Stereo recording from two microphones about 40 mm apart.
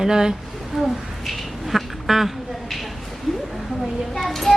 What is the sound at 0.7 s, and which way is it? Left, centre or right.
Bird, centre.